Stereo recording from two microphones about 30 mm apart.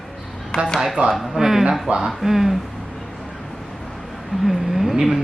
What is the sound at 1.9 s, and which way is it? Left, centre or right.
Speech, right.